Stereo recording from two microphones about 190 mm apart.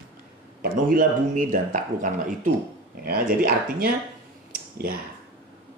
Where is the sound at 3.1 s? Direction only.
50° right (ahead or behind).